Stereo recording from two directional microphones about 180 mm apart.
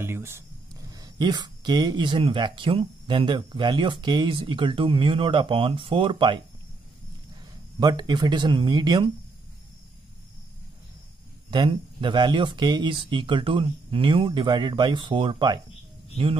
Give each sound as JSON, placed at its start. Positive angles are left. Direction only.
{"t": 0.0, "sound": "speech", "side_deg": -15}
{"t": 7.8, "sound": "speech", "side_deg": -25}
{"t": 11.5, "sound": "speech", "side_deg": -25}